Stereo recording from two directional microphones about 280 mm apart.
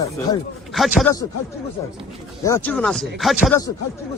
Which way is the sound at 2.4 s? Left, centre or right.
Centre.